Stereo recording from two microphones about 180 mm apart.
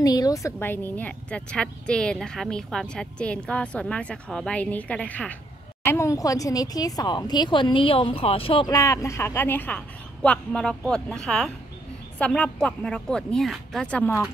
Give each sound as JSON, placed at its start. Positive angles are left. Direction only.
{"t": 0.0, "sound": "a woman's voice", "side_deg": 20}